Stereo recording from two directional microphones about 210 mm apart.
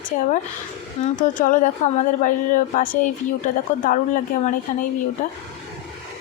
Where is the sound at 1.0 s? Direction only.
40° left (ahead or behind).